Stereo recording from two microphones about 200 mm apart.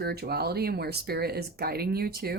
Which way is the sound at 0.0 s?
50° right (ahead or behind).